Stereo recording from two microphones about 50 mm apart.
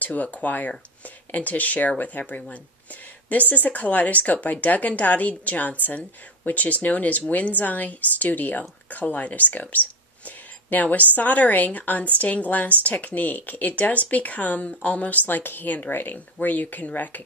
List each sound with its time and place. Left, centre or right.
0.0 s speech: left